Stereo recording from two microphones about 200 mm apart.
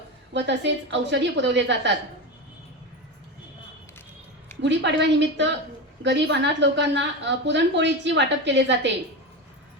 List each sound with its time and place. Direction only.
0.3 s a woman's voice: 60° right (ahead or behind)
4.6 s a woman's voice: 60° right (ahead or behind)